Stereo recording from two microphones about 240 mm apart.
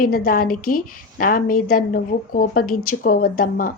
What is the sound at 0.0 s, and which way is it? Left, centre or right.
A woman's voice, left.